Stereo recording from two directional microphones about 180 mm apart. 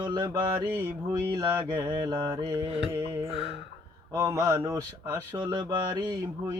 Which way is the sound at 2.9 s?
15° right (ahead or behind).